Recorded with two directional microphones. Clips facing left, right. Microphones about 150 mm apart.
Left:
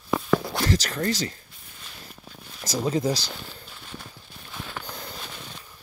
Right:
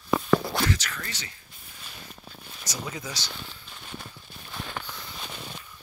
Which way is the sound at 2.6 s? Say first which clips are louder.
Left 12 dB; 35° left (ahead or behind).